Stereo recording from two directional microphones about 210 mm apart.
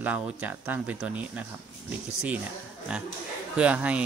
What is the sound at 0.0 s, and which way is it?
Speech, 5° right (ahead or behind).